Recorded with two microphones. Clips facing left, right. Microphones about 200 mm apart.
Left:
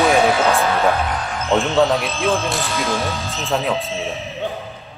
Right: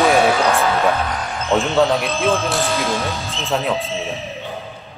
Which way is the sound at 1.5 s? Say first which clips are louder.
Even; centre (ahead or behind).